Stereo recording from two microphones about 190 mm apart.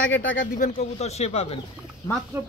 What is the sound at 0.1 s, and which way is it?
Speech, 85° left.